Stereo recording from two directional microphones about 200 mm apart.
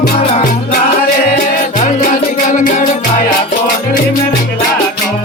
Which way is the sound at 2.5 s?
40° left (ahead or behind).